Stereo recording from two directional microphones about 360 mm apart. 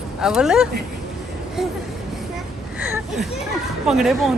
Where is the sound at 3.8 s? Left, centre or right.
Centre.